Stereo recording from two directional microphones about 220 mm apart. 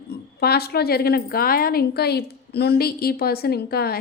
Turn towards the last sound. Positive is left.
turn(degrees=45)  # may be behind; listen again after turning